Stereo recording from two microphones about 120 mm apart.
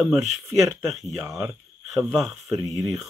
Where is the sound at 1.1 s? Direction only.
25° right (ahead or behind).